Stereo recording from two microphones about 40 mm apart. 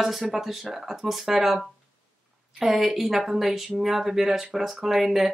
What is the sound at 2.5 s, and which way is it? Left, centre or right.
Speech, centre.